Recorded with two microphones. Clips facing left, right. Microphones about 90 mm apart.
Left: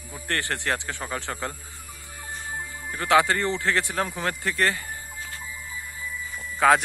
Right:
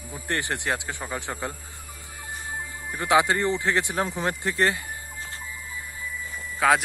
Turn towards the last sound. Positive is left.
turn(degrees=-5)  # may be behind; listen again after turning